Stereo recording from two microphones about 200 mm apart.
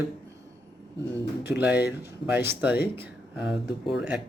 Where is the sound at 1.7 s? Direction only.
55° left (ahead or behind).